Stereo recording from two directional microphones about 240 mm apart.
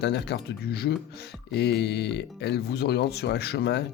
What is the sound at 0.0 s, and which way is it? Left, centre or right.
Speech, left.